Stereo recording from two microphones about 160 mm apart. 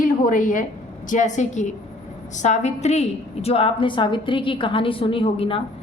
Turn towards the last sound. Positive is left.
turn(degrees=35)  # may be behind; listen again after turning